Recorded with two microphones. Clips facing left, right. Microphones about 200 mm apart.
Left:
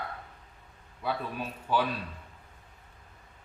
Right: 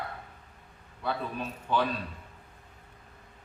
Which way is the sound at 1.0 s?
5° left (ahead or behind).